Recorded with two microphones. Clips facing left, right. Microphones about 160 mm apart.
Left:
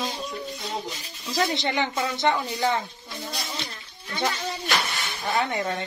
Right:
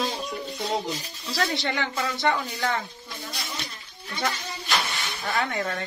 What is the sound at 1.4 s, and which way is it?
Speech, 20° left (ahead or behind).